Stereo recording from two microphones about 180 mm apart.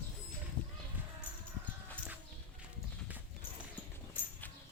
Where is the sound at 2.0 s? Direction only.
5° left (ahead or behind).